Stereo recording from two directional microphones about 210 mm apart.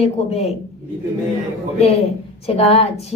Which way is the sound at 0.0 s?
30° left (ahead or behind).